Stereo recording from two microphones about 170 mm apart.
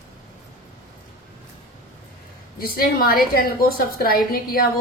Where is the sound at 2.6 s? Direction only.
60° left (ahead or behind).